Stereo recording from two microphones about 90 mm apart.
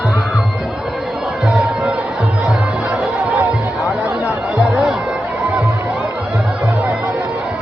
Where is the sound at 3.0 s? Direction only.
5° right (ahead or behind).